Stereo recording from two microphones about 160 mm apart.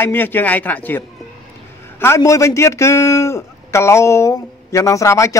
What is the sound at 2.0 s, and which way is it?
A man's voice, 15° left (ahead or behind).